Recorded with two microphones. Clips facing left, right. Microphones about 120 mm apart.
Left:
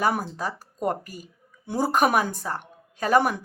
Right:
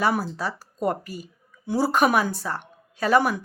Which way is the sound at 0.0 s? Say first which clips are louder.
Right 1 dB; 45° left (ahead or behind).